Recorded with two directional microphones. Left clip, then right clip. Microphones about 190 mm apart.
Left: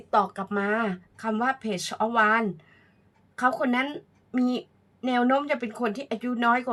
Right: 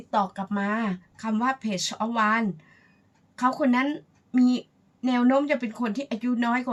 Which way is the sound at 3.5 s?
30° left (ahead or behind).